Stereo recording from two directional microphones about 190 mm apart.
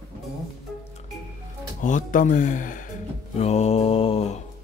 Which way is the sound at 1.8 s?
40° left (ahead or behind).